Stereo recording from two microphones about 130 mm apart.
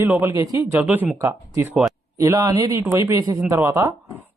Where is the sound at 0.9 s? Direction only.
15° right (ahead or behind).